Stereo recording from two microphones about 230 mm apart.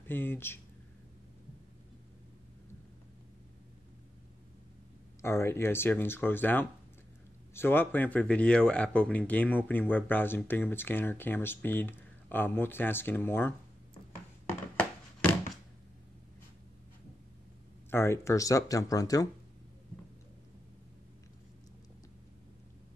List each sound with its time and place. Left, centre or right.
0.0 s speech: centre
5.2 s speech: centre
14.8 s a sound: centre
17.8 s speech: centre